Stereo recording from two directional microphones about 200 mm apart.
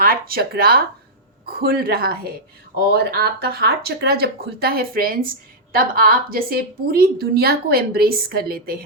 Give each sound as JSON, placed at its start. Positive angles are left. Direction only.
{"t": 0.0, "sound": "speech", "side_deg": -45}